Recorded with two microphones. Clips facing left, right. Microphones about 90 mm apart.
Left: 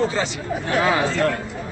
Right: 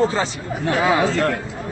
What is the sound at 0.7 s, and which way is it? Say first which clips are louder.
Speech: right 1 dB; centre (ahead or behind).